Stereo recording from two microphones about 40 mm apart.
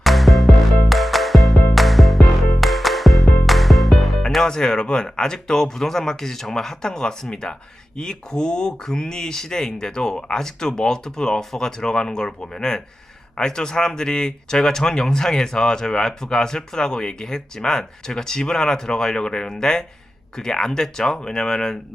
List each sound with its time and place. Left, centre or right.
0.0 s music: centre
4.4 s speech: centre